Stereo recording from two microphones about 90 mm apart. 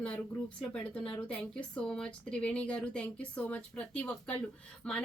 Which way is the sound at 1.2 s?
15° left (ahead or behind).